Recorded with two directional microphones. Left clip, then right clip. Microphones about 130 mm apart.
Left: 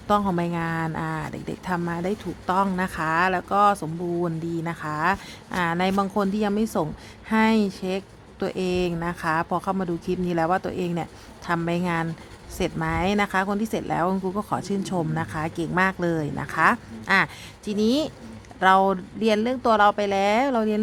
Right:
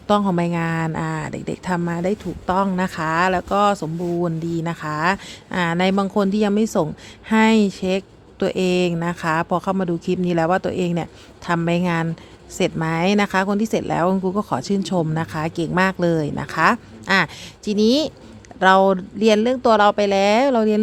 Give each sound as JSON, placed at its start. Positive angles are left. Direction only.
{"t": 0.1, "sound": "speech", "side_deg": -30}